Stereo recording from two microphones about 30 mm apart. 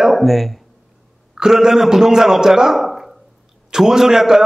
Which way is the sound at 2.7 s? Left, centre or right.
Centre.